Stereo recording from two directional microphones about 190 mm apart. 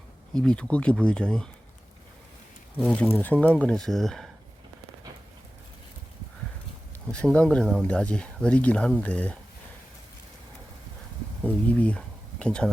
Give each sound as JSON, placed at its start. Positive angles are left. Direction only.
{"t": 0.3, "sound": "speech", "side_deg": 5}
{"t": 2.9, "sound": "speech", "side_deg": 10}
{"t": 7.1, "sound": "speech", "side_deg": 5}
{"t": 11.4, "sound": "a sound", "side_deg": 5}